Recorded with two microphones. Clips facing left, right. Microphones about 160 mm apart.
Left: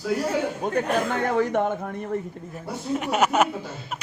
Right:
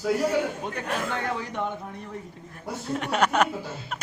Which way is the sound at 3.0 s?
5° left (ahead or behind).